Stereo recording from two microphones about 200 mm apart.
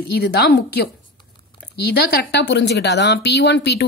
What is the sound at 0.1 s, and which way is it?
Speech, 55° left (ahead or behind).